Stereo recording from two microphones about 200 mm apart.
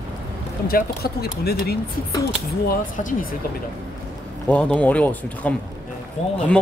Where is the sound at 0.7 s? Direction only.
50° left (ahead or behind).